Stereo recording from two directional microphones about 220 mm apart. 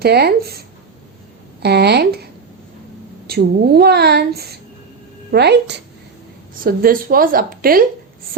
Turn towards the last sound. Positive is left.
turn(degrees=-40)  # may be behind; listen again after turning